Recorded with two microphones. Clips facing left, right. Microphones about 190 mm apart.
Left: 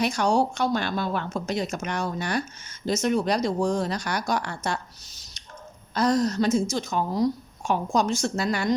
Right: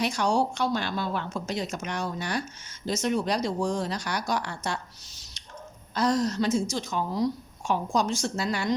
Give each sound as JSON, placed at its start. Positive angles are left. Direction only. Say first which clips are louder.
{"t": 0.0, "sound": "speech", "louder": "left 3 dB", "side_deg": 45}
{"t": 5.9, "sound": "speech", "louder": "left 3 dB", "side_deg": 45}